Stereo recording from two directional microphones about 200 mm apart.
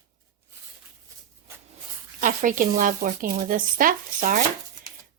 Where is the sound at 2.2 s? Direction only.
40° right (ahead or behind).